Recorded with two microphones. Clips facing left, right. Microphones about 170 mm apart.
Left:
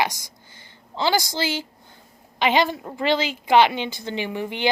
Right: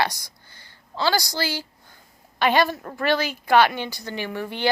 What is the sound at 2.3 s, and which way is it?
A woman's voice, 20° left (ahead or behind).